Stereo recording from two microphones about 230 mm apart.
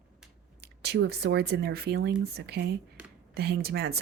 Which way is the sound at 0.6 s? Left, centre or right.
Right.